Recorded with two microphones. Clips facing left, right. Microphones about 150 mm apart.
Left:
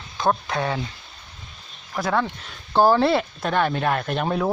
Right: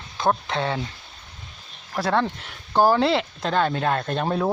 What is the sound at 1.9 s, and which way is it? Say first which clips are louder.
Speech: right 1 dB; 30° right (ahead or behind).